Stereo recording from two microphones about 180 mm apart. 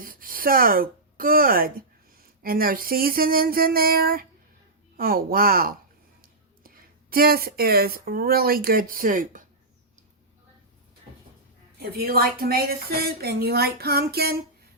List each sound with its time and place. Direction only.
0.0 s speech: 50° right (ahead or behind)
11.8 s speech: 55° right (ahead or behind)